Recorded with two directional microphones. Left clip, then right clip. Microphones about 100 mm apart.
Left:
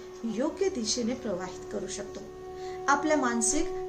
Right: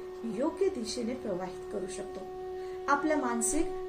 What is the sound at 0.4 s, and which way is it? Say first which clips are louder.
Speech: left 1 dB; 20° left (ahead or behind).